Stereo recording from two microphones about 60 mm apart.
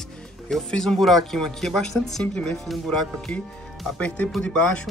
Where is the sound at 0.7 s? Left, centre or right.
Centre.